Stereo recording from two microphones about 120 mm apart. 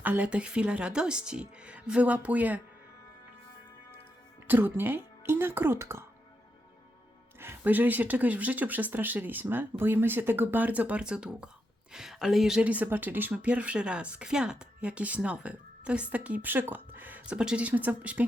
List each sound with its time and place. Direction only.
0.0 s a woman's voice: 15° right (ahead or behind)
4.4 s speech: 15° right (ahead or behind)
7.3 s a woman's voice: 15° right (ahead or behind)